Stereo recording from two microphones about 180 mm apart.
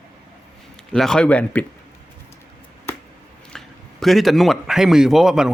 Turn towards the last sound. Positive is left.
turn(degrees=0)  # may be behind; listen again after turning